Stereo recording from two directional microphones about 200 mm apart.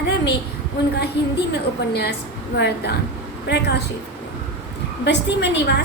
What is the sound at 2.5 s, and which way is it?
A woman's voice, 55° left (ahead or behind).